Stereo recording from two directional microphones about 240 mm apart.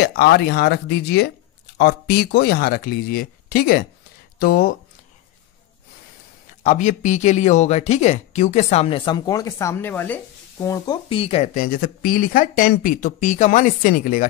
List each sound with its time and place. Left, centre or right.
0.0 s speech: left
6.6 s speech: left